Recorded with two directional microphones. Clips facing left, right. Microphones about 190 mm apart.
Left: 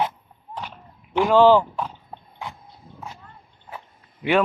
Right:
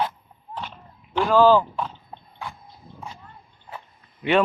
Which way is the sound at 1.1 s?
20° left (ahead or behind).